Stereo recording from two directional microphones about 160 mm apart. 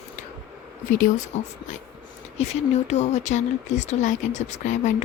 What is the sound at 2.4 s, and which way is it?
Speech, 45° left (ahead or behind).